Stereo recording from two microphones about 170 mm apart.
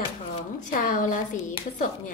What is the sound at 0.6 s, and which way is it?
Speech, 50° left (ahead or behind).